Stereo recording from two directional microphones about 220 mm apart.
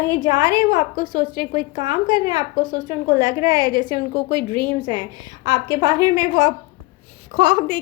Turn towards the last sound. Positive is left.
turn(degrees=-20)  # may be behind; listen again after turning